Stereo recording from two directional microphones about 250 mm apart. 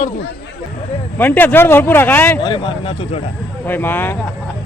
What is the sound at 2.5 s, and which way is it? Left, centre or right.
Speech, centre.